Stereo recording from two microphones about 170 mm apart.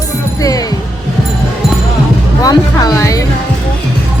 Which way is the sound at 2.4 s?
20° left (ahead or behind).